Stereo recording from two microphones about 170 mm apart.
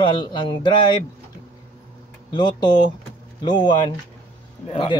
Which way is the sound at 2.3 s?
25° left (ahead or behind).